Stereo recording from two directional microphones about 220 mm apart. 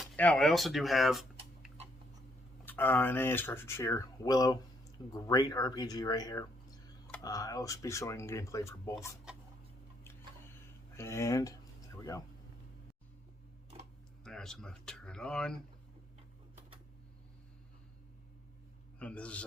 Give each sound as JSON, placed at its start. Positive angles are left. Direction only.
{"t": 0.0, "sound": "speech", "side_deg": 5}
{"t": 10.0, "sound": "a sound", "side_deg": 10}
{"t": 11.9, "sound": "speech", "side_deg": 15}
{"t": 14.3, "sound": "speech", "side_deg": 0}
{"t": 18.9, "sound": "speech", "side_deg": 5}